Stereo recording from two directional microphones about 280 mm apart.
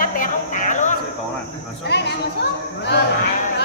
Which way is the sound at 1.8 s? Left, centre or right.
Left.